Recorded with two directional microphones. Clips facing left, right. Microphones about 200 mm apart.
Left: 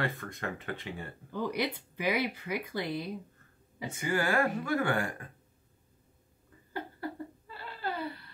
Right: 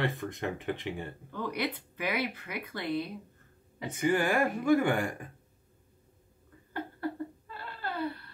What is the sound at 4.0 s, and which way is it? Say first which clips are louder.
Speech: right 2 dB; 15° right (ahead or behind).